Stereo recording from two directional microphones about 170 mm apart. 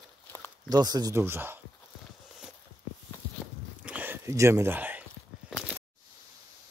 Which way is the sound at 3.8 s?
10° right (ahead or behind).